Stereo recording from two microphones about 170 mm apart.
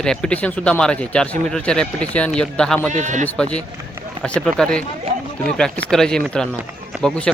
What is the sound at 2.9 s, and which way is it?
Speech, 45° right (ahead or behind).